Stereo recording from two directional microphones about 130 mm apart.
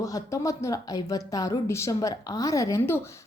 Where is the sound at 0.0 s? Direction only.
25° left (ahead or behind).